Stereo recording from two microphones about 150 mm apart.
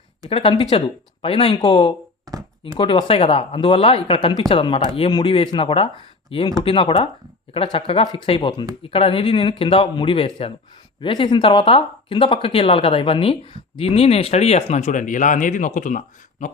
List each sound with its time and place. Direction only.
0.3 s speech: 40° left (ahead or behind)
2.3 s a sound: 25° right (ahead or behind)
2.7 s speech: 35° left (ahead or behind); by 16.5 s 60° left (ahead or behind)